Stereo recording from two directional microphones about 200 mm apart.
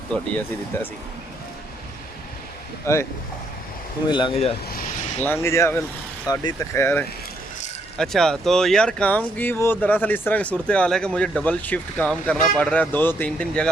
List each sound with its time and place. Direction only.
0.1 s speech: 10° left (ahead or behind)
2.8 s speech: 15° left (ahead or behind)
4.1 s speech: 25° left (ahead or behind)
5.2 s speech: 10° left (ahead or behind)
7.9 s speech: centre (ahead or behind)